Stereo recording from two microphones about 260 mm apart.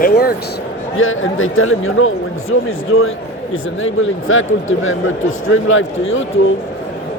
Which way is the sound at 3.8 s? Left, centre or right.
Left.